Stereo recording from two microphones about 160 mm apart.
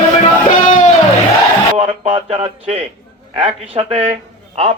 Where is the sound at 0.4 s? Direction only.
50° left (ahead or behind).